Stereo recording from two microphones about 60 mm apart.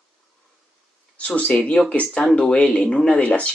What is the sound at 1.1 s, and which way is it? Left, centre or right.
Speech, left.